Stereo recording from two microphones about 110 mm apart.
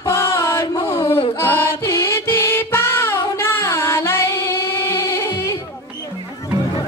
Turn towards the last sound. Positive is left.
turn(degrees=25)  # may be behind; listen again after turning